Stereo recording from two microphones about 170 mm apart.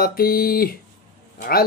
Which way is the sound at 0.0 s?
60° left (ahead or behind).